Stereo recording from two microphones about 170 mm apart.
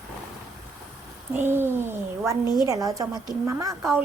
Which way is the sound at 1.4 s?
15° right (ahead or behind).